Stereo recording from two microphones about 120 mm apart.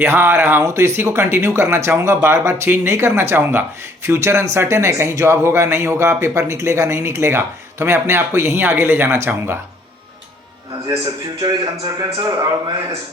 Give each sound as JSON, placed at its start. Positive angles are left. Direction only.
{"t": 0.0, "sound": "speech", "side_deg": -20}
{"t": 10.8, "sound": "speech", "side_deg": -30}